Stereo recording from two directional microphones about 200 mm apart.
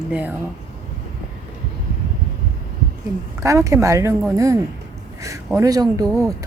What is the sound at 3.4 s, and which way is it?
Speech, 15° right (ahead or behind).